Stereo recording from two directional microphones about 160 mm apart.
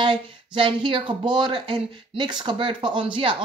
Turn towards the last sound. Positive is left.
turn(degrees=-30)  # may be behind; listen again after turning